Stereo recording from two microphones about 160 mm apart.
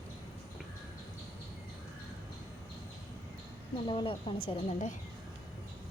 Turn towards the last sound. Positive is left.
turn(degrees=35)  # may be behind; listen again after turning